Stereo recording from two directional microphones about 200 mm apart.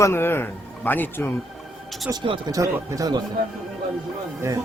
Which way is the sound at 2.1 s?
20° right (ahead or behind).